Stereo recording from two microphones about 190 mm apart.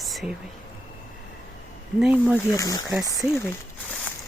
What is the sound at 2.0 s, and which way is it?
Speech, 5° right (ahead or behind).